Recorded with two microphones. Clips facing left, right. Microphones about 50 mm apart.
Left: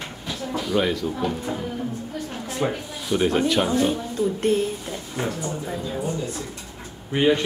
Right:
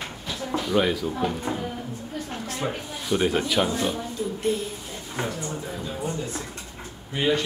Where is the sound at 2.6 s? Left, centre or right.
Centre.